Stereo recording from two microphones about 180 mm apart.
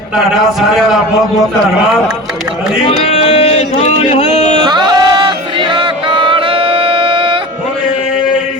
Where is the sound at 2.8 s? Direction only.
35° left (ahead or behind).